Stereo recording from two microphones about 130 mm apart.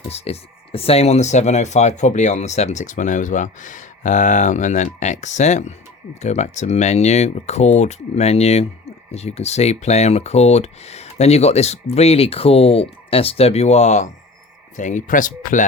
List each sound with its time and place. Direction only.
0.1 s speech: 50° left (ahead or behind); by 15.6 s 90° left